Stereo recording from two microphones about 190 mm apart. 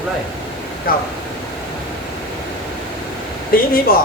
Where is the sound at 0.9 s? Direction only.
50° left (ahead or behind).